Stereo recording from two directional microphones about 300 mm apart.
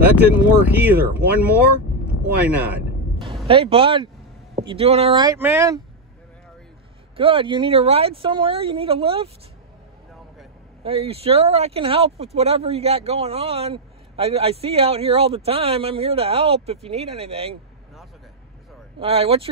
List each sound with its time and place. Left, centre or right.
0.0 s speech: centre
3.4 s speech: centre
7.2 s speech: centre
10.8 s speech: centre
18.9 s speech: centre